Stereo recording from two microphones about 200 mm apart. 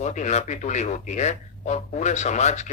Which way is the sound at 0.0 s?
35° left (ahead or behind).